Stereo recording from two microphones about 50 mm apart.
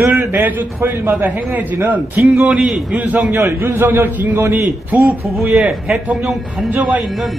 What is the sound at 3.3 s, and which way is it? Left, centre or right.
A man's voice, right.